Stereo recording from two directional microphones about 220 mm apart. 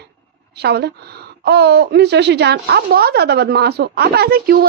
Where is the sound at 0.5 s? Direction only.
45° right (ahead or behind).